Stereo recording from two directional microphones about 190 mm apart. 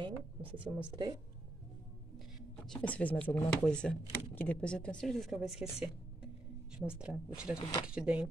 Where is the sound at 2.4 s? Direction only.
5° left (ahead or behind).